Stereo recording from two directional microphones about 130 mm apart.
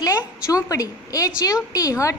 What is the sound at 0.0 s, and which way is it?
A woman's voice, 25° left (ahead or behind).